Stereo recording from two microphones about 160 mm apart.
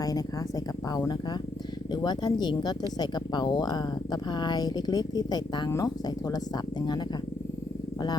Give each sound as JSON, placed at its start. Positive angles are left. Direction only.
{"t": 0.9, "sound": "speech", "side_deg": 25}